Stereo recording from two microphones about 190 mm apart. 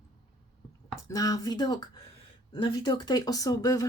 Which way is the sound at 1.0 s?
20° left (ahead or behind).